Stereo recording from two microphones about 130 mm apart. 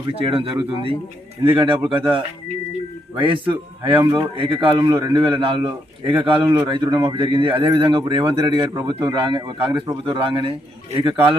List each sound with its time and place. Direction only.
0.0 s a man's voice: 45° right (ahead or behind)